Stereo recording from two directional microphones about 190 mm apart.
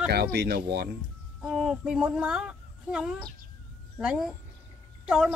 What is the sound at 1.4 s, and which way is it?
Speech, 5° right (ahead or behind).